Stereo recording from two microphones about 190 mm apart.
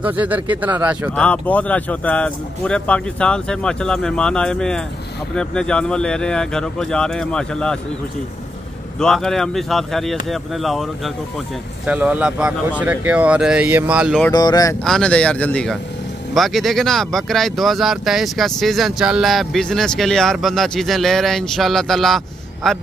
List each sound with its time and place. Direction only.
0.0 s speech: 10° right (ahead or behind)
1.1 s speech: 5° left (ahead or behind)
9.0 s speech: 5° left (ahead or behind)
14.3 s speech: 20° left (ahead or behind)
14.9 s speech: 5° left (ahead or behind)